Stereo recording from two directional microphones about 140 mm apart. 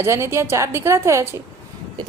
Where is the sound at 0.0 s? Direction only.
20° right (ahead or behind).